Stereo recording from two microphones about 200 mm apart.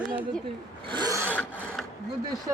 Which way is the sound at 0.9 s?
20° right (ahead or behind).